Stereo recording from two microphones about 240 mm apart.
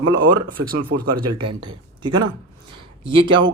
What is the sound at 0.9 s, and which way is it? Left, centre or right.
Speech, right.